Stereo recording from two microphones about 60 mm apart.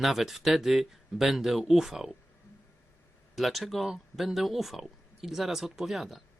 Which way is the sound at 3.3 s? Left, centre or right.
Centre.